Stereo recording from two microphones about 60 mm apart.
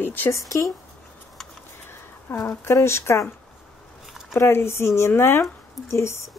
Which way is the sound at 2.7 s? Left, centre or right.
Left.